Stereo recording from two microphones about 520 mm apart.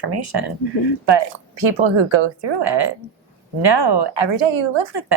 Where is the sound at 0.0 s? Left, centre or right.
Right.